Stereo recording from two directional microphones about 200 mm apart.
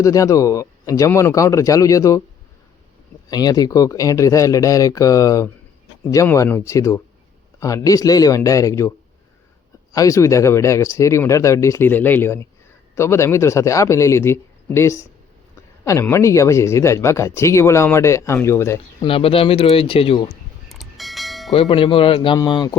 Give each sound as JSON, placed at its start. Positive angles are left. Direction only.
{"t": 0.0, "sound": "speech", "side_deg": 15}
{"t": 3.2, "sound": "speech", "side_deg": 20}
{"t": 9.9, "sound": "speech", "side_deg": 15}
{"t": 19.0, "sound": "speech", "side_deg": 30}
{"t": 20.7, "sound": "church bell", "side_deg": 0}
{"t": 21.5, "sound": "speech", "side_deg": 25}